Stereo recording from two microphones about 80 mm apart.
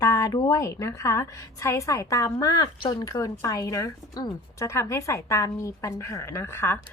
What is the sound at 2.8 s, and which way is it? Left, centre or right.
Speech, left.